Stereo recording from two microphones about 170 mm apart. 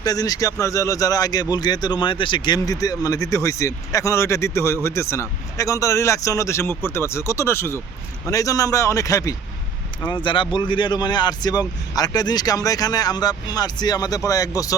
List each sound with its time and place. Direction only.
0.0 s speech: 20° left (ahead or behind)